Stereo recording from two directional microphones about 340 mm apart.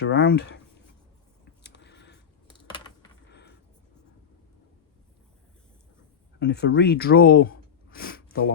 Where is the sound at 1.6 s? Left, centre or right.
Left.